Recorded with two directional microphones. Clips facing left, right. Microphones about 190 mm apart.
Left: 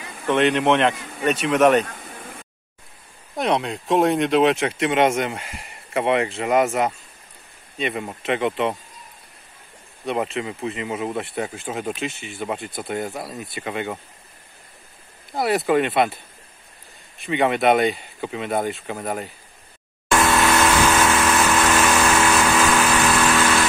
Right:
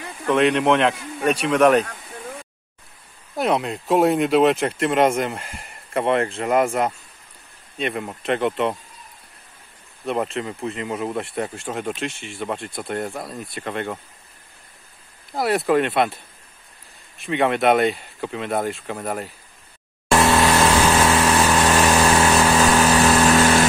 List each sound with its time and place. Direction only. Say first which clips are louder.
0.3 s speech: right 1 dB; centre (ahead or behind)
3.3 s speech: right 1 dB; centre (ahead or behind)
10.0 s speech: even; centre (ahead or behind)
15.3 s speech: even; centre (ahead or behind)
17.2 s speech: even; centre (ahead or behind)
20.1 s vehicle: right 2 dB; 30° right (ahead or behind)